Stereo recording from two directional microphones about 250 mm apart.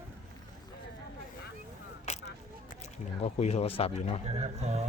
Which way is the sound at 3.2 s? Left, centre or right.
Left.